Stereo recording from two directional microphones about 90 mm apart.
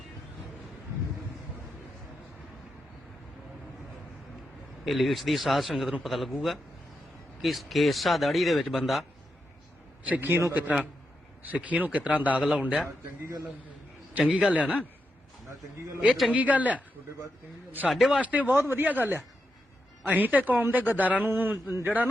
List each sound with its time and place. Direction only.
4.9 s speech: centre (ahead or behind)
7.4 s speech: centre (ahead or behind)
10.1 s a man's voice: 25° right (ahead or behind)
14.1 s a man's voice: 10° right (ahead or behind)
16.3 s a man's voice: 15° right (ahead or behind)
17.9 s speech: centre (ahead or behind)
18.2 s a man's voice: 15° right (ahead or behind)